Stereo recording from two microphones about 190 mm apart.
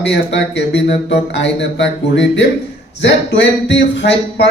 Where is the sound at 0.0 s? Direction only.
65° left (ahead or behind).